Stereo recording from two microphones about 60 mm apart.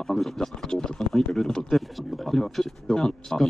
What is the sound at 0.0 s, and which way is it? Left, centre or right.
Speech, centre.